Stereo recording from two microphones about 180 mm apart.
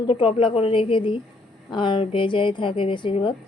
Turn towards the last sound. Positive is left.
turn(degrees=30)  # may be behind; listen again after turning